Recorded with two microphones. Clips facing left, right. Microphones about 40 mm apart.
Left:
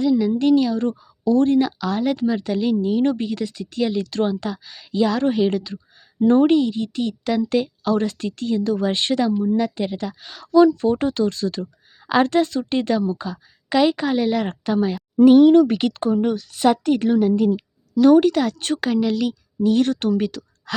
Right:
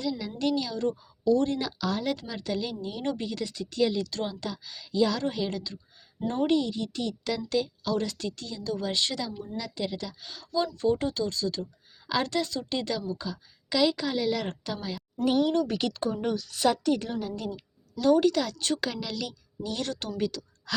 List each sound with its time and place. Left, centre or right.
0.0 s a woman's voice: left
3.3 s speech: centre
3.9 s speech: left
4.4 s a woman's voice: left
6.5 s a woman's voice: left
9.6 s a woman's voice: left
10.2 s speech: left
10.8 s speech: left
12.0 s a woman's voice: left
14.9 s a sound: left
15.5 s a woman's voice: left
19.9 s a woman's voice: left